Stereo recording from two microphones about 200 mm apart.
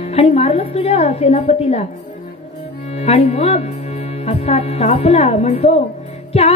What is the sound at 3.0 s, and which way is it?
Music, 30° left (ahead or behind).